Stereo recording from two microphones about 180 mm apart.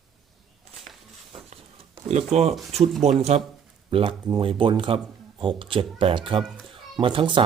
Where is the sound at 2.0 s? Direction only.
40° right (ahead or behind).